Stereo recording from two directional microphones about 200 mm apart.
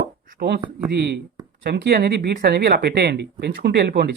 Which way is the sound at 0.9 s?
55° right (ahead or behind).